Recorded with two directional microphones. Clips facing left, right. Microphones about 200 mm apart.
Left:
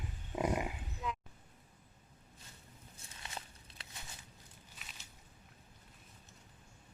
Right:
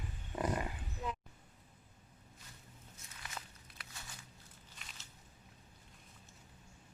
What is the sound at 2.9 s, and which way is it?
Walk, 30° left (ahead or behind).